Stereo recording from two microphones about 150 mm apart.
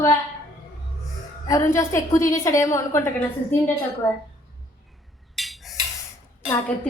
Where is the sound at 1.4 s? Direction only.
20° left (ahead or behind).